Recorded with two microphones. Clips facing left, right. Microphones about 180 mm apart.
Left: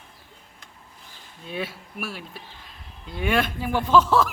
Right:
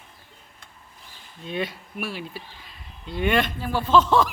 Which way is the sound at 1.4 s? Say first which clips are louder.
Right 3 dB; 5° left (ahead or behind).